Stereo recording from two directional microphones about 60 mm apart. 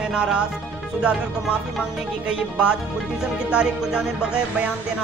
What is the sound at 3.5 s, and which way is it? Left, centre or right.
Speech, centre.